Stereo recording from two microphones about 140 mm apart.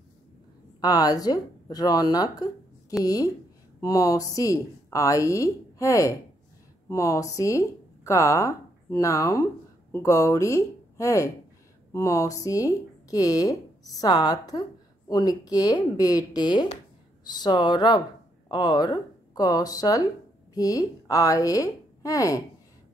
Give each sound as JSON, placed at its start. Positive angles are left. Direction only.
{"t": 0.7, "sound": "speech", "side_deg": 30}